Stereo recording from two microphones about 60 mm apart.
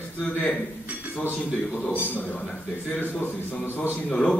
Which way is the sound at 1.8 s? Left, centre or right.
Left.